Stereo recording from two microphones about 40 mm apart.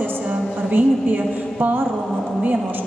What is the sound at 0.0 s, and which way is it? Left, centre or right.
Music, right.